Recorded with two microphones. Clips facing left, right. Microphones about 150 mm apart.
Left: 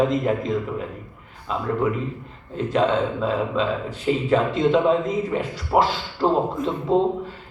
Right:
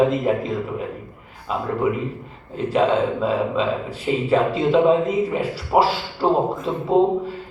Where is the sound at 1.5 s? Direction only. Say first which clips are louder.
Right 2 dB; 5° right (ahead or behind).